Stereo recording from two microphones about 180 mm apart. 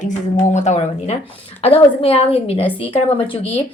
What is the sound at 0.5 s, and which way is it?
A woman's voice, 40° left (ahead or behind).